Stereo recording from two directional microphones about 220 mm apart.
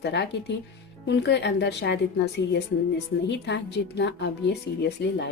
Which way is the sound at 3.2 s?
50° left (ahead or behind).